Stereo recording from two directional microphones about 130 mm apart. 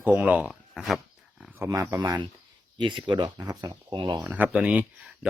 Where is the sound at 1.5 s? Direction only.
25° right (ahead or behind).